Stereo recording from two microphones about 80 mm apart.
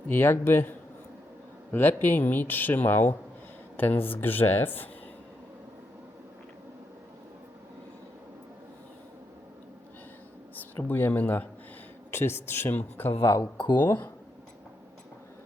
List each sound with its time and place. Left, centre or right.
0.1 s speech: left
10.8 s speech: left
13.2 s speech: left
13.7 s speech: left